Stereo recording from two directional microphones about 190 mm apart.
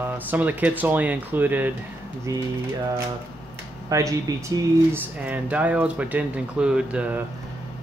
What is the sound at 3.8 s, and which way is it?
Speech, 15° right (ahead or behind).